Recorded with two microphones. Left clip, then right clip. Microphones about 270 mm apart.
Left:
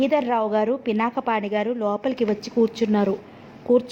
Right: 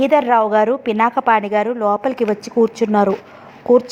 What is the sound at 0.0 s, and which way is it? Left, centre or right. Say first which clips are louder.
A woman's voice: right 8 dB; right.